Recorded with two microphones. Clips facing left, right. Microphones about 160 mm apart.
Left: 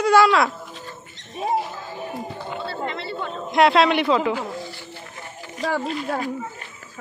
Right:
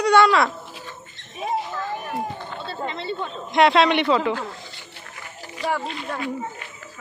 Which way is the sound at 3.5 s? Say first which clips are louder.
Even; centre (ahead or behind).